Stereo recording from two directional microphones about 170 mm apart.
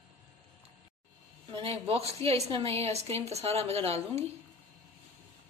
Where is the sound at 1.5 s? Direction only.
35° right (ahead or behind).